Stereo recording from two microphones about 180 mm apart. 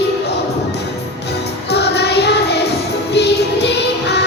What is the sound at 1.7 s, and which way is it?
Child singing, 70° left (ahead or behind).